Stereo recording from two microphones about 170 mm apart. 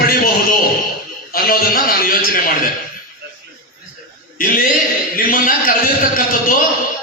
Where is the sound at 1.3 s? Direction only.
60° left (ahead or behind).